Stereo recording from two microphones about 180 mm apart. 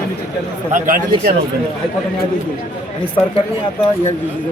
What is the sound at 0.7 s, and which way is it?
Speech, 50° right (ahead or behind).